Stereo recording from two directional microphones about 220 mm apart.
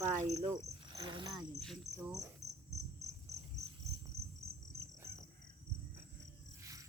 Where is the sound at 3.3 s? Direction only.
15° right (ahead or behind).